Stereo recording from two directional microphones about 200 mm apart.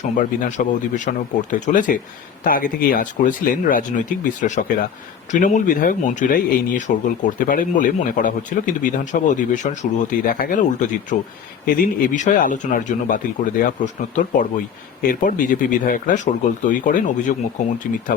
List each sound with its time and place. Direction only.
0.0 s speech: 40° left (ahead or behind)